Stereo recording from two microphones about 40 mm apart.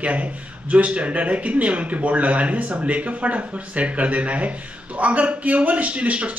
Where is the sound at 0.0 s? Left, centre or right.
Right.